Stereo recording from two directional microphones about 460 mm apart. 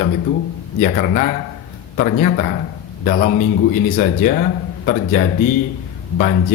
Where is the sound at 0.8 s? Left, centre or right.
Centre.